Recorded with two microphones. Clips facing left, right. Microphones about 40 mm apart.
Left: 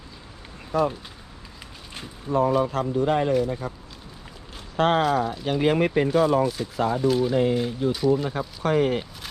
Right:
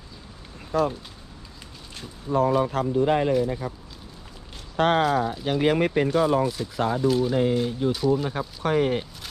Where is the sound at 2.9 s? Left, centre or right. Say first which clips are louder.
Right 1 dB; centre.